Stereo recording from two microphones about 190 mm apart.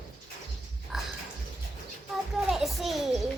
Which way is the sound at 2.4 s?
Centre (ahead or behind).